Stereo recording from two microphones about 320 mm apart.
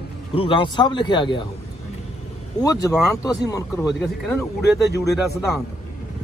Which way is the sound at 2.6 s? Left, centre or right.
Centre.